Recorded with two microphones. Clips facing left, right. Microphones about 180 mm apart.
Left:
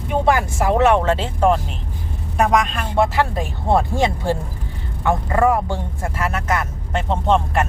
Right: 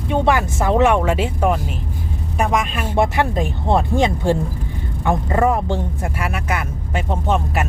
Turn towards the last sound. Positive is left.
turn(degrees=-5)  # may be behind; listen again after turning